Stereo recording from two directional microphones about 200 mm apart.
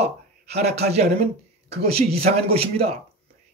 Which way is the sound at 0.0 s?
35° right (ahead or behind).